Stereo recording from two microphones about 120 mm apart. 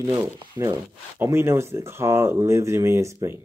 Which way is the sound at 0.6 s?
30° right (ahead or behind).